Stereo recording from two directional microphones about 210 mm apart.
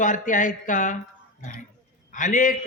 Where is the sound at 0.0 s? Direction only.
40° left (ahead or behind).